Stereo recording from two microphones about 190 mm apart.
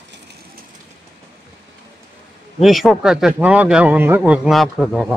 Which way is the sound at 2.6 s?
Centre (ahead or behind).